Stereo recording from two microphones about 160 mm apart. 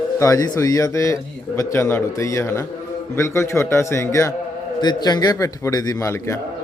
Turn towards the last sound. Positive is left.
turn(degrees=15)  # may be behind; listen again after turning